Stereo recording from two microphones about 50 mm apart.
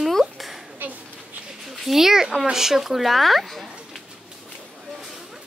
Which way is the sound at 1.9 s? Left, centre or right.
Centre.